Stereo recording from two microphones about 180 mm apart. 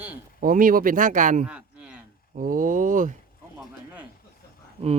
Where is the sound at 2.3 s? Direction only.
50° right (ahead or behind).